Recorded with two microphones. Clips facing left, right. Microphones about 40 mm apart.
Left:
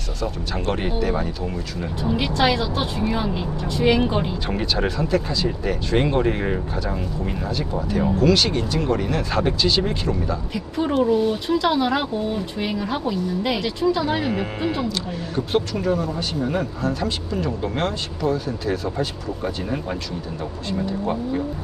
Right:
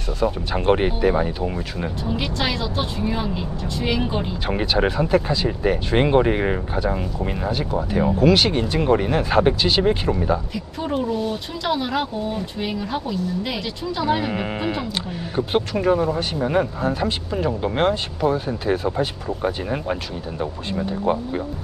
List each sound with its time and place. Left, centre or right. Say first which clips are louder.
0.2 s speech: right 5 dB; right
2.1 s speech: left 6 dB; centre
4.4 s speech: right 3 dB; centre
10.5 s speech: left 3 dB; centre
14.8 s speech: left 1 dB; centre
21.0 s speech: right 2 dB; centre